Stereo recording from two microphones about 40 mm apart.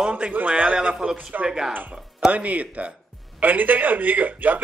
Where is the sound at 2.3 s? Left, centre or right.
Right.